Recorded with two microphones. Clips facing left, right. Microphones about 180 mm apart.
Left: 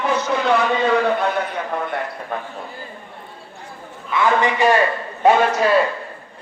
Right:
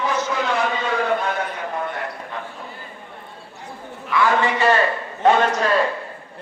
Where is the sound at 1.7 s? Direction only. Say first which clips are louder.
Left 2 dB; 60° left (ahead or behind).